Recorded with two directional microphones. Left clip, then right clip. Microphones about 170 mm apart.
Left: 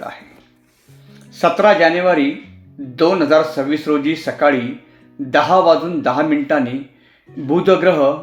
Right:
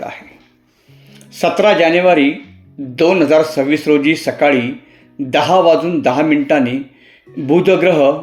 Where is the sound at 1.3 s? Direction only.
25° right (ahead or behind).